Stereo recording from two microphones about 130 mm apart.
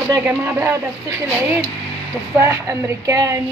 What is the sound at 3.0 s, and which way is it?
Speech, 25° right (ahead or behind).